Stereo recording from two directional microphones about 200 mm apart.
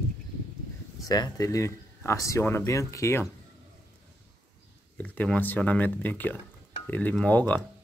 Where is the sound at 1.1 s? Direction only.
20° left (ahead or behind).